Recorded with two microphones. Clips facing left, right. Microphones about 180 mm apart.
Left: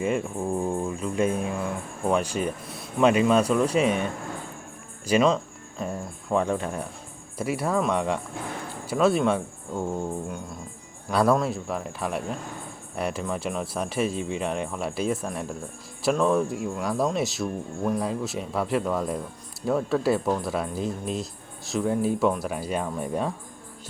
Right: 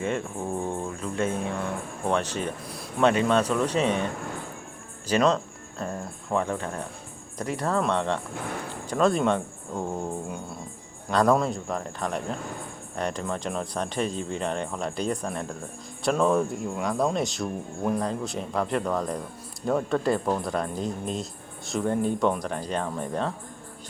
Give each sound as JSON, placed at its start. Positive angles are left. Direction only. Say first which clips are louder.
{"t": 0.0, "sound": "speech", "louder": "left 3 dB", "side_deg": 10}
{"t": 5.0, "sound": "speech", "louder": "left 1 dB", "side_deg": 5}
{"t": 11.1, "sound": "speech", "louder": "even", "side_deg": 5}